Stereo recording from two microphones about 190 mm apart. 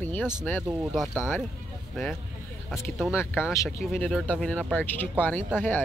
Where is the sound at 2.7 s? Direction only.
5° right (ahead or behind).